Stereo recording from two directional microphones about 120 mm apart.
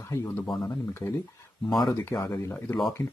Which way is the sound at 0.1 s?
25° left (ahead or behind).